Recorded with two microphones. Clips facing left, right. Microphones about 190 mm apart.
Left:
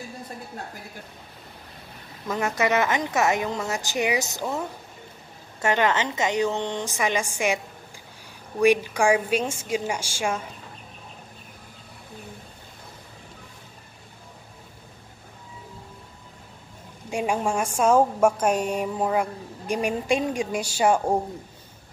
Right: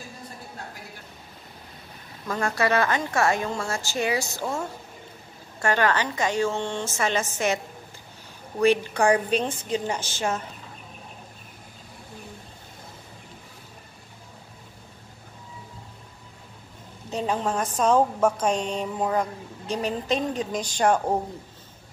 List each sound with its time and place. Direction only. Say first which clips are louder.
2.2 s a woman's voice: left 1 dB; 15° left (ahead or behind)
5.6 s a woman's voice: even; 20° left (ahead or behind)
17.1 s a woman's voice: left 1 dB; 10° left (ahead or behind)